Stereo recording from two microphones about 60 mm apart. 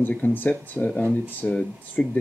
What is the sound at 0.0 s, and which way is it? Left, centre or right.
Speech, left.